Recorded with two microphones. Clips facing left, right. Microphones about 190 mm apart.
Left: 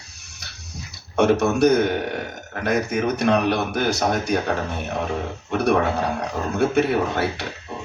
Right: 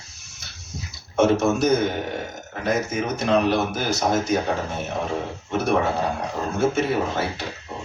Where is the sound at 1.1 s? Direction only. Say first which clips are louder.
Left 1 dB; 65° left (ahead or behind).